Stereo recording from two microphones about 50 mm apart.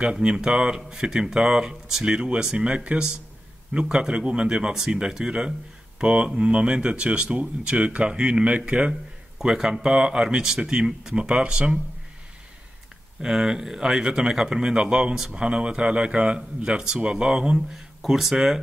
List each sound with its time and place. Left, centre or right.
0.0 s speech: centre
13.2 s speech: centre